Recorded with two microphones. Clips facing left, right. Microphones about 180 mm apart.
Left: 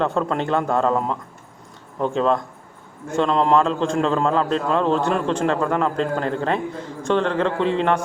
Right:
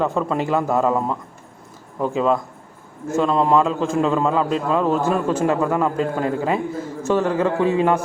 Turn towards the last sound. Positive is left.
turn(degrees=-10)  # may be behind; listen again after turning